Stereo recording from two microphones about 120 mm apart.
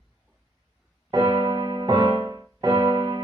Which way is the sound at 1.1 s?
35° right (ahead or behind).